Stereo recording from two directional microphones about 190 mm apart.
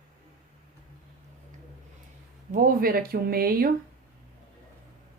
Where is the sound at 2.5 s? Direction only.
45° right (ahead or behind).